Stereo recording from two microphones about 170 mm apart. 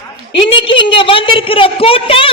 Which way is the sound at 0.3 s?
30° left (ahead or behind).